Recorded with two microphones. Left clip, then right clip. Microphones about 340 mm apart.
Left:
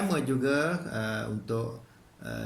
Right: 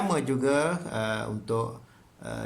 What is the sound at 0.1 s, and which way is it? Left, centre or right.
Speech, centre.